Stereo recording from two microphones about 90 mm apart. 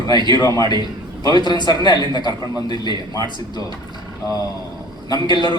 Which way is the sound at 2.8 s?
55° right (ahead or behind).